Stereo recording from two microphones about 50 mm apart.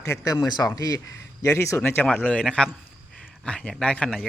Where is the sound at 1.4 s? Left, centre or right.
Left.